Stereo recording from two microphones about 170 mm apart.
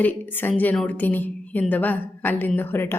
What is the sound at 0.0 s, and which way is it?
A woman's voice, 10° left (ahead or behind).